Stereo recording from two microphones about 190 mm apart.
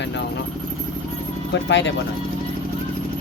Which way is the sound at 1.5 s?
70° left (ahead or behind).